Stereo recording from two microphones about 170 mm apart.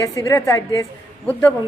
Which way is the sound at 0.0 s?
20° left (ahead or behind).